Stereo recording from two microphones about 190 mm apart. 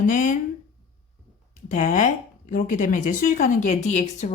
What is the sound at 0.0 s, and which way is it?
Speech, 45° left (ahead or behind).